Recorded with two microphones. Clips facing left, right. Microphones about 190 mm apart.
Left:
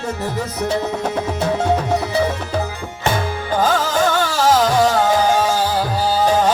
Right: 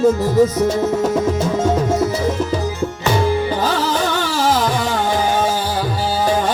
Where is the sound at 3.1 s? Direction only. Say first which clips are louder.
Right 3 dB; 45° left (ahead or behind).